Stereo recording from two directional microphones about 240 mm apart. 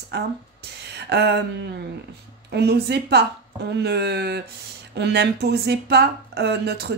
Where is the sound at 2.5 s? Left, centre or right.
Right.